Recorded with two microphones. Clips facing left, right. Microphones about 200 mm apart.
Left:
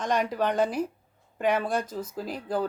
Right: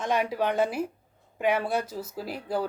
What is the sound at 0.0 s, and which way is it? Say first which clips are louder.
Speech: even; 5° right (ahead or behind).